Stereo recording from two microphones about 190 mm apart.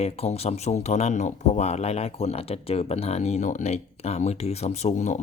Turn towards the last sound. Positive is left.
turn(degrees=40)  # may be behind; listen again after turning